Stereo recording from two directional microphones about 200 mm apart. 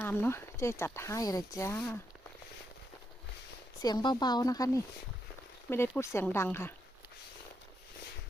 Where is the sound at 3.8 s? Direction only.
20° left (ahead or behind).